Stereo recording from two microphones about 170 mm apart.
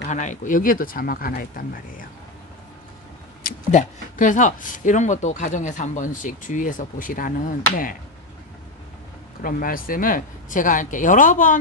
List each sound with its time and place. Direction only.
0.0 s speech: 45° left (ahead or behind)
3.4 s speech: 50° left (ahead or behind)
9.4 s speech: 55° left (ahead or behind)